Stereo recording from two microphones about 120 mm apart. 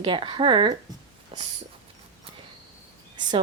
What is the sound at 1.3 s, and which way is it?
Dog, 50° right (ahead or behind).